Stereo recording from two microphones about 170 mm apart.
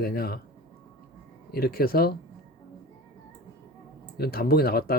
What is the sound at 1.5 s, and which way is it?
Speech, 60° left (ahead or behind).